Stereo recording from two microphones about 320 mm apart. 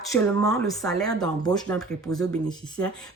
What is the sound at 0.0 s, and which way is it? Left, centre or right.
Speech, centre.